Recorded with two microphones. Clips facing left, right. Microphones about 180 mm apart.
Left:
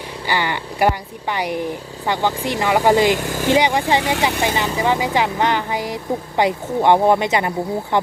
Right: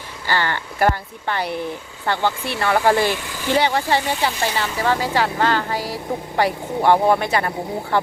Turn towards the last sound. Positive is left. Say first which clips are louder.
# left 2 dB
turn(degrees=20)  # may be behind; listen again after turning